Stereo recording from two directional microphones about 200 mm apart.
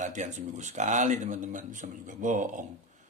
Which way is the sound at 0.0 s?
35° right (ahead or behind).